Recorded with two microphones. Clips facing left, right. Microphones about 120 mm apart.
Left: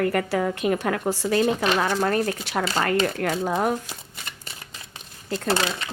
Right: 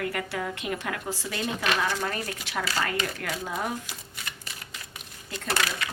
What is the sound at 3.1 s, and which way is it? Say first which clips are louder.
Speech: left 9 dB; 50° left (ahead or behind).